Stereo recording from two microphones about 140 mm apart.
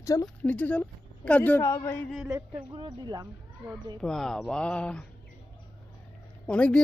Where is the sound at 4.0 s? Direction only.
5° left (ahead or behind).